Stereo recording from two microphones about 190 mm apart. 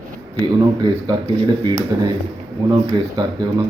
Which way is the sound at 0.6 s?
25° right (ahead or behind).